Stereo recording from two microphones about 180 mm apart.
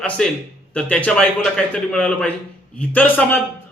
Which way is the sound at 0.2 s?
5° left (ahead or behind).